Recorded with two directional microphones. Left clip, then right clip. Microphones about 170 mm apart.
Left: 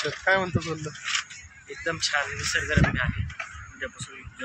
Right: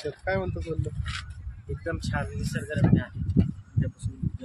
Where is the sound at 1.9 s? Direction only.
65° right (ahead or behind).